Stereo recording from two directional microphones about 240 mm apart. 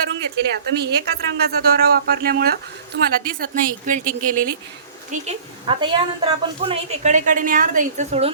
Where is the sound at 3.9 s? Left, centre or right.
Right.